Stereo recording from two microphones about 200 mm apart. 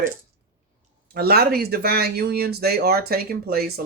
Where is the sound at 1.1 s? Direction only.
50° right (ahead or behind).